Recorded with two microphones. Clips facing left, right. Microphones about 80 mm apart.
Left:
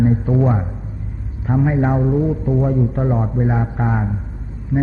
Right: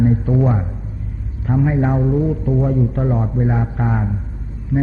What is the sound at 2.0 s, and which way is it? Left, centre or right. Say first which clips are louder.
Speech: even; centre.